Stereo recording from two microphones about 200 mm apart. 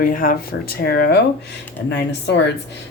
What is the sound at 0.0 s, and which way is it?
A woman's voice, 45° left (ahead or behind).